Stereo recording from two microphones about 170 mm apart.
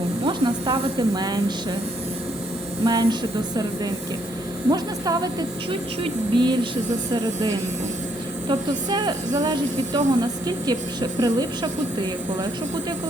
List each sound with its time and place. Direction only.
0.3 s a woman's voice: 30° right (ahead or behind)
2.8 s a woman's voice: 20° right (ahead or behind)
8.4 s a woman's voice: 25° right (ahead or behind)